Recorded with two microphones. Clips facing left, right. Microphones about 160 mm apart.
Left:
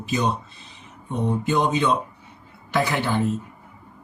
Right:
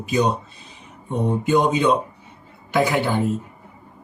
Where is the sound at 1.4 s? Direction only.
15° right (ahead or behind).